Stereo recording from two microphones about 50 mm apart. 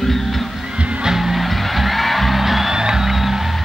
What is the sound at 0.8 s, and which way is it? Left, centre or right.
Music, right.